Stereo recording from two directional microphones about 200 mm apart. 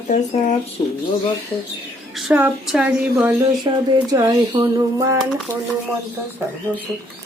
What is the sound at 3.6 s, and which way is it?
Speech, 20° right (ahead or behind).